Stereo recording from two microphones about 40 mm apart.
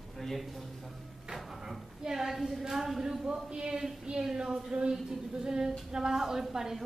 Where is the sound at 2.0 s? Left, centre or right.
Centre.